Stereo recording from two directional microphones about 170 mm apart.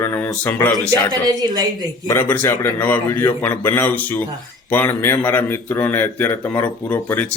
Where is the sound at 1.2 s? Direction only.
25° right (ahead or behind).